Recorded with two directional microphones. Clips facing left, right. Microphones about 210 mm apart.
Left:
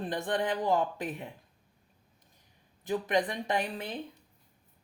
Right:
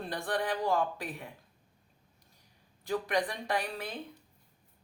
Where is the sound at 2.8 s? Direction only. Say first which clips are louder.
Left 2 dB; 20° left (ahead or behind).